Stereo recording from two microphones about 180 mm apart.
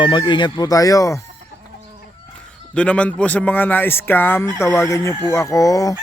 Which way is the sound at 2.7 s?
5° left (ahead or behind).